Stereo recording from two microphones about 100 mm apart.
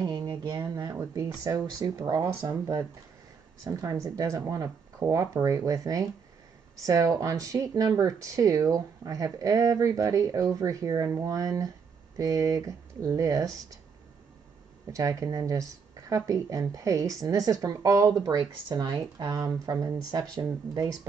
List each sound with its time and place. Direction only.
0.0 s a sound: 45° right (ahead or behind)
1.1 s speech: 35° right (ahead or behind)
14.9 s speech: 35° right (ahead or behind)